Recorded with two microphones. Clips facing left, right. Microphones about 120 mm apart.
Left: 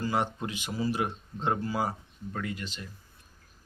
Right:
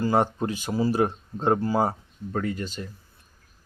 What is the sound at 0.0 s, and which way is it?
Speech, 40° right (ahead or behind).